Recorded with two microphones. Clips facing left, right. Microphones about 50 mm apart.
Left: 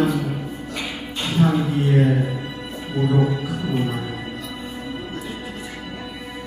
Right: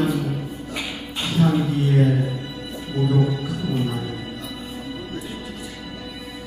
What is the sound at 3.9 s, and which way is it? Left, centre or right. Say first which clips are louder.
Music: left 1 dB; centre.